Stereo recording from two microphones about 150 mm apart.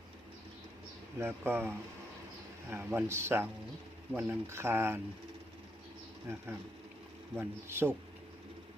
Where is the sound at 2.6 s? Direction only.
15° right (ahead or behind).